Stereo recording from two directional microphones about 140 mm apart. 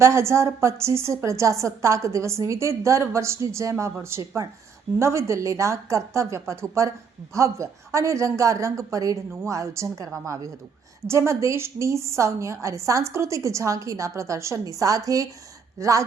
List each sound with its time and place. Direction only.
0.0 s a woman's voice: 20° right (ahead or behind)